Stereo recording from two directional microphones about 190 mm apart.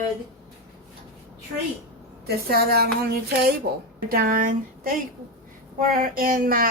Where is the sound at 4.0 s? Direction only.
50° right (ahead or behind).